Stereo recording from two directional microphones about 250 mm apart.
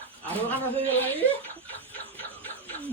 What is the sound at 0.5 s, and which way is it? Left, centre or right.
Speech, centre.